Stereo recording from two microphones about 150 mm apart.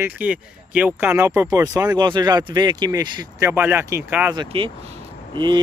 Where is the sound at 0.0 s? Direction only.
10° right (ahead or behind).